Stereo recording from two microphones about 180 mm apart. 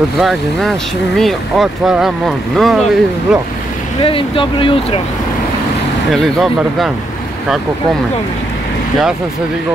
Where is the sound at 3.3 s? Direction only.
5° right (ahead or behind).